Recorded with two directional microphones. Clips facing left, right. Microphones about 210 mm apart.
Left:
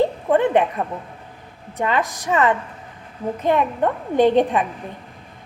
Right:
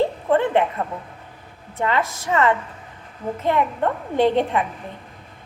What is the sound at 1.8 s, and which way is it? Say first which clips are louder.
A woman's voice: left 1 dB; 15° left (ahead or behind).